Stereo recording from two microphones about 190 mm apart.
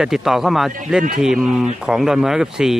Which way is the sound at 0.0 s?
Centre (ahead or behind).